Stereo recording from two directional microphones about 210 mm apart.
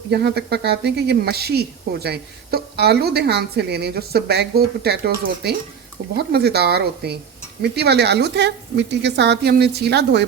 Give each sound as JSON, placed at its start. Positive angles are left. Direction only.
{"t": 0.1, "sound": "speech", "side_deg": -50}